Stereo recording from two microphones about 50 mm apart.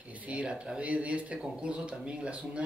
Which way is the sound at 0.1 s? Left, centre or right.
Right.